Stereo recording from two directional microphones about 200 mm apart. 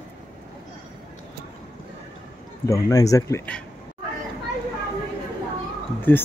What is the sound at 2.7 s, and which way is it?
Speech, 15° left (ahead or behind).